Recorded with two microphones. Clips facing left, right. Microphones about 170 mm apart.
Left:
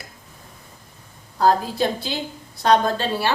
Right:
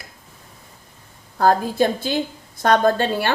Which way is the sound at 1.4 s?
50° right (ahead or behind).